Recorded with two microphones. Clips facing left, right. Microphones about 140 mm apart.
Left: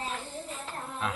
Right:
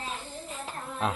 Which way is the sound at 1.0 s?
25° right (ahead or behind).